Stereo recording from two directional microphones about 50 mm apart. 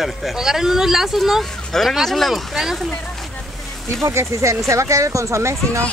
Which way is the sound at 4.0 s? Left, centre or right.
Right.